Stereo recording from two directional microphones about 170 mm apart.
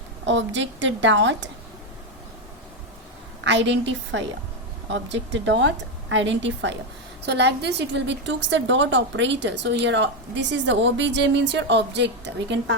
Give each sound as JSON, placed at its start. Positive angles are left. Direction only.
{"t": 0.3, "sound": "a woman's voice", "side_deg": -90}
{"t": 3.4, "sound": "a woman's voice", "side_deg": -90}